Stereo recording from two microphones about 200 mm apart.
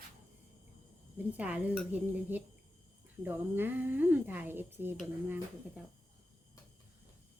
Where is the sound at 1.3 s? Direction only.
5° right (ahead or behind).